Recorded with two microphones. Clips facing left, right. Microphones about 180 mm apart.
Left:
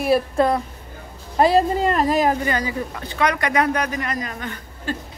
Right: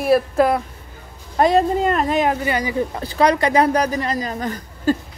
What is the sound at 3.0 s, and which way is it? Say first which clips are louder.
Speech: right 5 dB; 35° right (ahead or behind).